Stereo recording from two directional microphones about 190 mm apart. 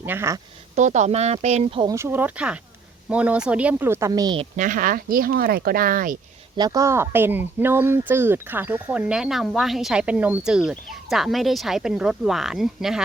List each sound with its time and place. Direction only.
0.0 s speech: 10° right (ahead or behind)
0.8 s speech: 40° right (ahead or behind)
1.9 s speech: 15° right (ahead or behind)
4.5 s speech: 45° right (ahead or behind)
6.6 s speech: 20° right (ahead or behind); by 13.0 s centre (ahead or behind)